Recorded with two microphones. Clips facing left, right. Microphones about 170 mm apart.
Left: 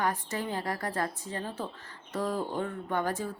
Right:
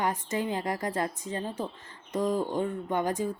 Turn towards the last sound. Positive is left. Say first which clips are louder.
# right 3 dB
turn(degrees=-15)  # may be behind; listen again after turning